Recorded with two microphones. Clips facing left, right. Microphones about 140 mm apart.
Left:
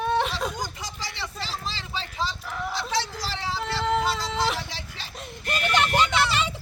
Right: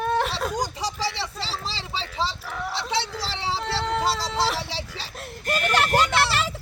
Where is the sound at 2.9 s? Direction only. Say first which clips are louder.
Right 1 dB; 25° right (ahead or behind).